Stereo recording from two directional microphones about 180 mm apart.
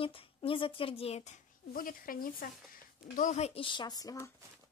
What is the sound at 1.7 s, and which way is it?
Speech, 50° left (ahead or behind).